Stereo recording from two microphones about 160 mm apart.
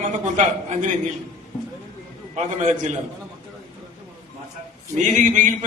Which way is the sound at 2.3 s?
50° right (ahead or behind).